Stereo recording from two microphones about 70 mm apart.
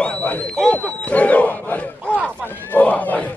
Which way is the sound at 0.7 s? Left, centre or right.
Centre.